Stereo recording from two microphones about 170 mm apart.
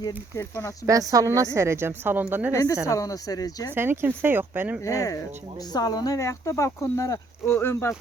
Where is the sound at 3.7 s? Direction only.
15° right (ahead or behind).